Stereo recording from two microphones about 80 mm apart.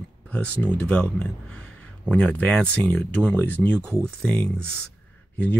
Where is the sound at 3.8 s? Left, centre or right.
Right.